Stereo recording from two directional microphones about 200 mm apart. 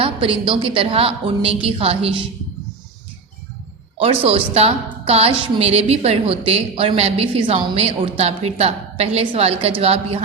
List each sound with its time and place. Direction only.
0.0 s a woman's voice: 25° right (ahead or behind)
3.9 s a woman's voice: 30° right (ahead or behind)